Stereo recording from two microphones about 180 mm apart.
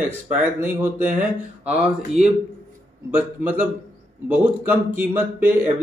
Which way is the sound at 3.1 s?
10° right (ahead or behind).